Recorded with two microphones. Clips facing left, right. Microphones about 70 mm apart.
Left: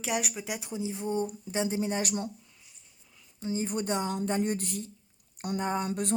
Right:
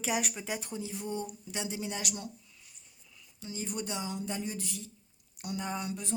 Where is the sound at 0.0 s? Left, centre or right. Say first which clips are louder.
Left 1 dB; centre.